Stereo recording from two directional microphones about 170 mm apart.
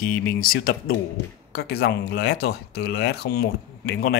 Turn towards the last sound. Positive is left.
turn(degrees=65)  # may be behind; listen again after turning